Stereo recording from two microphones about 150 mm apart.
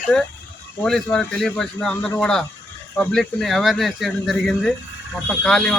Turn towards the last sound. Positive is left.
turn(degrees=5)  # may be behind; listen again after turning